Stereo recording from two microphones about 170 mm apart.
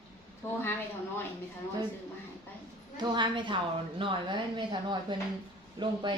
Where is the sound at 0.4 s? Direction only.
15° left (ahead or behind).